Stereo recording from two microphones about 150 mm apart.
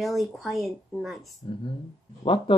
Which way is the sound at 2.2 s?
35° left (ahead or behind).